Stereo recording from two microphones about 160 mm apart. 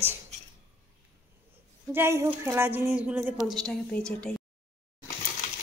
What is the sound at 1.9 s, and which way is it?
Speech, 15° right (ahead or behind).